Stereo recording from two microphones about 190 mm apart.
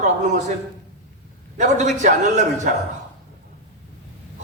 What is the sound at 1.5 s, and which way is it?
A man's voice, 40° right (ahead or behind).